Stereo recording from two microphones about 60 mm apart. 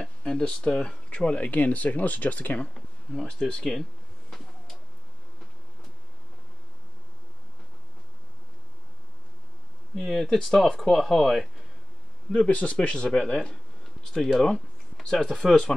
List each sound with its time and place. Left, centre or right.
0.2 s speech: centre
3.1 s speech: centre
9.9 s speech: centre
12.3 s speech: centre